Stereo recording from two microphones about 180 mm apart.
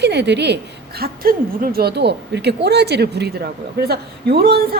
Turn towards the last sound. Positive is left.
turn(degrees=-60)  # may be behind; listen again after turning